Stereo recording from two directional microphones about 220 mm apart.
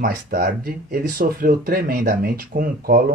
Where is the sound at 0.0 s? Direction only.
40° right (ahead or behind).